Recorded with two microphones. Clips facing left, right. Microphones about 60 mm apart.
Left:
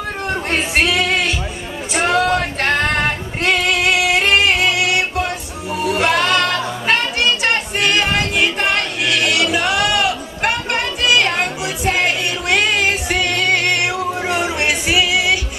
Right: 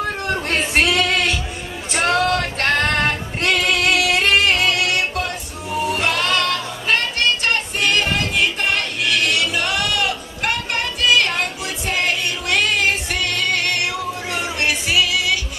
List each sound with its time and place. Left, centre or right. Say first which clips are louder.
0.3 s music: left 2 dB; centre
2.0 s female singing: left 2 dB; centre
5.9 s music: left 6 dB; centre
9.0 s a sound: left 2 dB; centre